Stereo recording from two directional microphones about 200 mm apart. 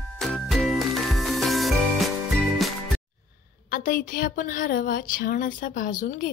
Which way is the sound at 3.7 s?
45° left (ahead or behind).